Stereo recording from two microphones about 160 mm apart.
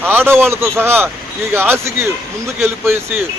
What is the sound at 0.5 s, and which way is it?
A man's voice, 15° right (ahead or behind).